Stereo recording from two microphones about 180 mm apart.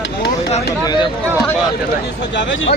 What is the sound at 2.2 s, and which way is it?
Speech, 80° left.